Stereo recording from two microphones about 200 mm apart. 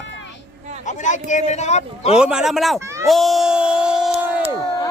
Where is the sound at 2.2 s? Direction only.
5° right (ahead or behind).